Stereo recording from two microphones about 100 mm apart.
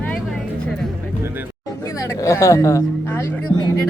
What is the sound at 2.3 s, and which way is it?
Speech, 30° left (ahead or behind).